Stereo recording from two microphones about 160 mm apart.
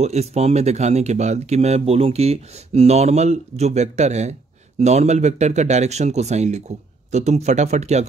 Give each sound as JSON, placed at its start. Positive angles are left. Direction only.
{"t": 0.0, "sound": "speech", "side_deg": -40}